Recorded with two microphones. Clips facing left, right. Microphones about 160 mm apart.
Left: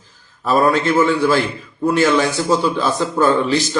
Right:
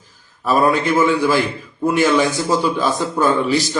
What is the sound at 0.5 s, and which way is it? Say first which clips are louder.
A man's voice: left 1 dB; 15° right (ahead or behind).